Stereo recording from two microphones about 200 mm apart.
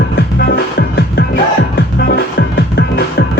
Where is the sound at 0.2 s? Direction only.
50° left (ahead or behind).